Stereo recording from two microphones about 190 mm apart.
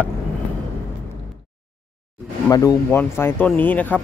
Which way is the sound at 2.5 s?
15° left (ahead or behind).